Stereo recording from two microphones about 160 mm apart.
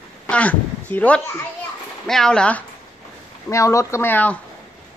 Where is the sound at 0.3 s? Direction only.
10° left (ahead or behind).